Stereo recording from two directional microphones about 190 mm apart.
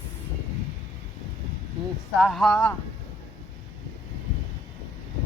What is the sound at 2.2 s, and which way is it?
Speech, centre (ahead or behind).